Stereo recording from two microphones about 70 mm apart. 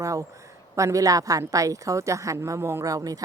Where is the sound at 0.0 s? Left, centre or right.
Right.